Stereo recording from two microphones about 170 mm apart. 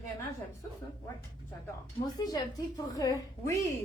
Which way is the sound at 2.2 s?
25° left (ahead or behind).